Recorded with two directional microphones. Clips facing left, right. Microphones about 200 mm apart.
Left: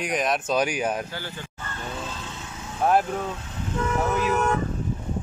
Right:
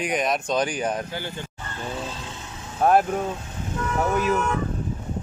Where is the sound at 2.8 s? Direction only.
45° right (ahead or behind).